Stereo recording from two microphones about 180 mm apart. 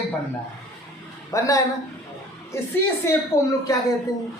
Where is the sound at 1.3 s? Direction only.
15° left (ahead or behind).